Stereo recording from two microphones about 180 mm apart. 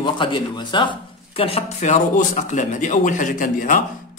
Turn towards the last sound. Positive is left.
turn(degrees=50)  # may be behind; listen again after turning